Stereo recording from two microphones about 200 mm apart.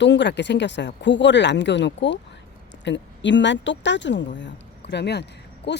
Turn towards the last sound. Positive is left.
turn(degrees=55)  # may be behind; listen again after turning